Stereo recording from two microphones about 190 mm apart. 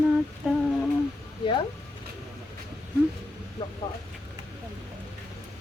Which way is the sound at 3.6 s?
25° left (ahead or behind).